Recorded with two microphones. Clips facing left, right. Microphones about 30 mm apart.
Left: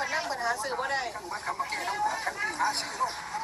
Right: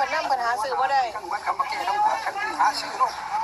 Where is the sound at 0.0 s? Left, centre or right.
Right.